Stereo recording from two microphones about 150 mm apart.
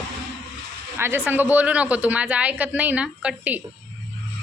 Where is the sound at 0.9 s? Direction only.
15° right (ahead or behind).